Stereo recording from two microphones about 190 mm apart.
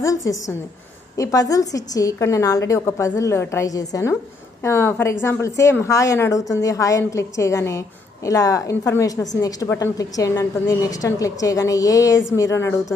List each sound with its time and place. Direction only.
0.0 s a woman's voice: 15° left (ahead or behind)